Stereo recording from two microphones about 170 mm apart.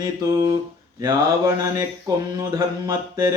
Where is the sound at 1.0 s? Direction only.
20° right (ahead or behind).